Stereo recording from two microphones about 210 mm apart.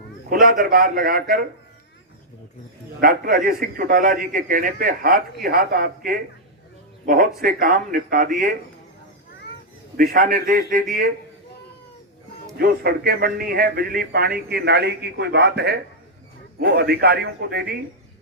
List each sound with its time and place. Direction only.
0.3 s a man's voice: 45° right (ahead or behind)
3.0 s a man's voice: 40° right (ahead or behind)
10.0 s speech: 40° right (ahead or behind)
12.5 s a man's voice: 45° right (ahead or behind)